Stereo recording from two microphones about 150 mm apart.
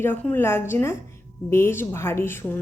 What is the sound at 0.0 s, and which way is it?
A woman's voice, 15° left (ahead or behind).